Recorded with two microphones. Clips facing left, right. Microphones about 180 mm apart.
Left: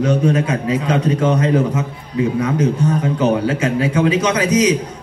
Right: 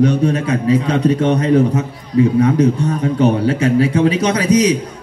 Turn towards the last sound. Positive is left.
turn(degrees=-35)  # may be behind; listen again after turning